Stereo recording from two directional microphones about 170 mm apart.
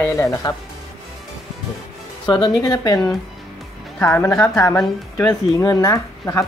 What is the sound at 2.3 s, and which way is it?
Speech, 25° left (ahead or behind).